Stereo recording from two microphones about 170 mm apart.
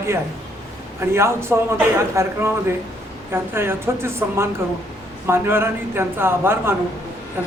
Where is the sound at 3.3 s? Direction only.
15° right (ahead or behind).